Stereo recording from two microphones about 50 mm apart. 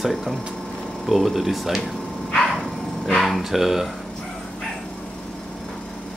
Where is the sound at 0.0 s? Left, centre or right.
Centre.